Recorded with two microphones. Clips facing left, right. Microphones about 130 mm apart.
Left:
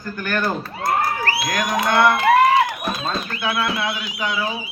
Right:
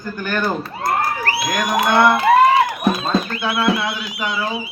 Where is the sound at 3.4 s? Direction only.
5° right (ahead or behind).